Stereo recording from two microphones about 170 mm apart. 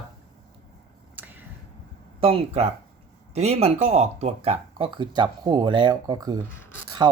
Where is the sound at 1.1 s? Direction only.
10° right (ahead or behind).